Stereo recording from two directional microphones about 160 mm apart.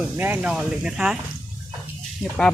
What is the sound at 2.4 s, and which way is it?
Speech, 5° left (ahead or behind).